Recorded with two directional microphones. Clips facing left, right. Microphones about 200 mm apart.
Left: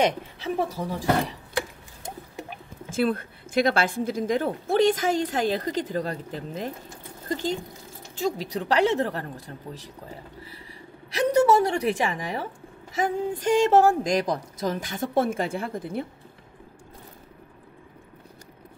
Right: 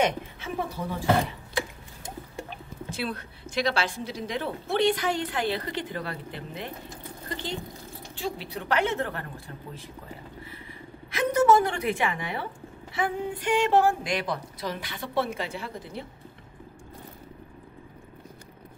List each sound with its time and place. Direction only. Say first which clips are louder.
0.0 s speech: left 2 dB; 35° left (ahead or behind)
3.0 s a woman's voice: left 10 dB; 50° left (ahead or behind)
11.1 s a woman's voice: left 2 dB; 35° left (ahead or behind); by 16.1 s 50° left (ahead or behind)